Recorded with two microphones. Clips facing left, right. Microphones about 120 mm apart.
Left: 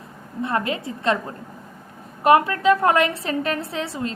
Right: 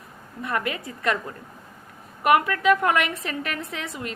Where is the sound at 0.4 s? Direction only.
25° left (ahead or behind).